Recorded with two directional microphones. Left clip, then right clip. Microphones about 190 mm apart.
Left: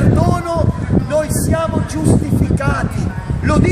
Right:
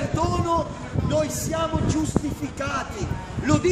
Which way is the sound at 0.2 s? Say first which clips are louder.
Left 6 dB; 35° left (ahead or behind).